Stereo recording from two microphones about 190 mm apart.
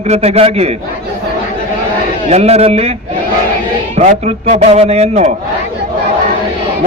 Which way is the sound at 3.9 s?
35° right (ahead or behind).